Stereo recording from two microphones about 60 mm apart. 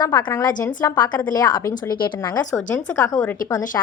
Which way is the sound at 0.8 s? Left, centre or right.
Left.